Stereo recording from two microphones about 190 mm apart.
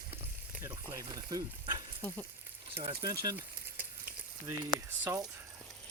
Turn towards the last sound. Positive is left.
turn(degrees=-15)  # may be behind; listen again after turning